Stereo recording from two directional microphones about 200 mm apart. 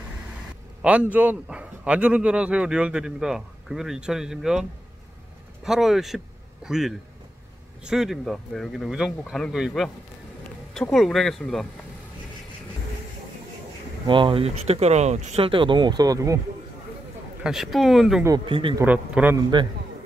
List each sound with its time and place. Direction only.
1.1 s a man's voice: 10° right (ahead or behind)
14.0 s speech: 25° right (ahead or behind)
17.4 s a man's voice: centre (ahead or behind)
18.2 s speech: 20° right (ahead or behind)
18.9 s a man's voice: 10° right (ahead or behind)